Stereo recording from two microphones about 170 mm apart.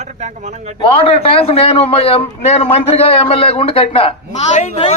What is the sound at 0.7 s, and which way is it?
A man's voice, 35° left (ahead or behind).